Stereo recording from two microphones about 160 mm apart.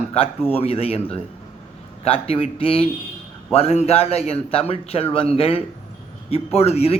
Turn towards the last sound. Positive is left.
turn(degrees=40)  # may be behind; listen again after turning